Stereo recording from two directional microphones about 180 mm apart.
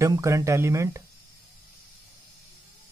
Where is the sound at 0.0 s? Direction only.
15° right (ahead or behind).